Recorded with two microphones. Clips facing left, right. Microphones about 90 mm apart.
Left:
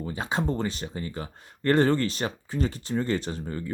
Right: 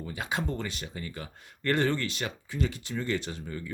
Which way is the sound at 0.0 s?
30° left (ahead or behind).